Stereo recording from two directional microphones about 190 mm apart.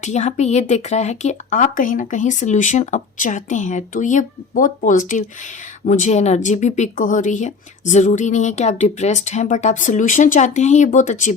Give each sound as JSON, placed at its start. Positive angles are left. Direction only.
{"t": 0.0, "sound": "speech", "side_deg": 35}